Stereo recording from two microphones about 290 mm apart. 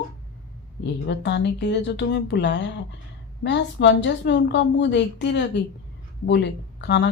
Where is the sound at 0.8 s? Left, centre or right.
Left.